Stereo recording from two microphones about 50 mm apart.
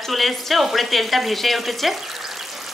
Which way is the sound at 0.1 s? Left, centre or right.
Centre.